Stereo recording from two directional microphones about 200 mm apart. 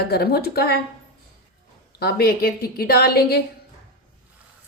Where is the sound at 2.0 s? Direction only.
50° left (ahead or behind).